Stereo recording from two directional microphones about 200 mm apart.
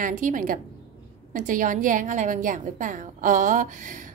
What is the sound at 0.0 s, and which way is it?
A woman's voice, 40° right (ahead or behind).